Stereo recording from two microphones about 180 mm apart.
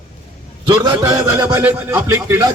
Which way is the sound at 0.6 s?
20° right (ahead or behind).